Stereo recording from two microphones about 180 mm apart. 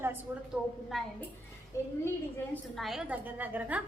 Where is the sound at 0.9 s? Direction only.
Centre (ahead or behind).